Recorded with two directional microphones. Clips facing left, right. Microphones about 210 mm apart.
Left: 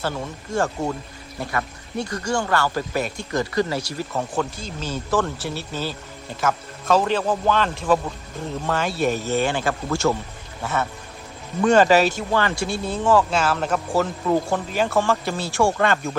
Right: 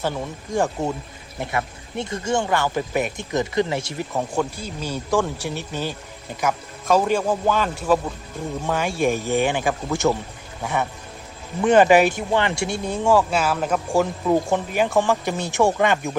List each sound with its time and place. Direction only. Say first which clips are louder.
0.0 s speech: right 1 dB; 15° right (ahead or behind)